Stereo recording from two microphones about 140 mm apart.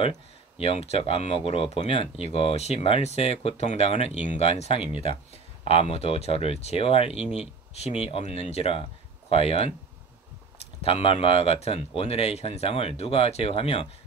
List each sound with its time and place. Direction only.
0.6 s speech: 45° left (ahead or behind)